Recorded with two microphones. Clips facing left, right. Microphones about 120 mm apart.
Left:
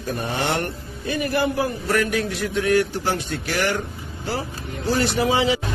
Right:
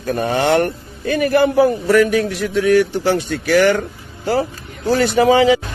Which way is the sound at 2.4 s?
90° right.